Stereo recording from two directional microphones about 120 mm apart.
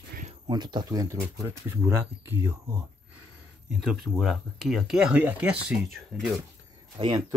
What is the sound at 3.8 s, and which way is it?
Speech, 5° right (ahead or behind).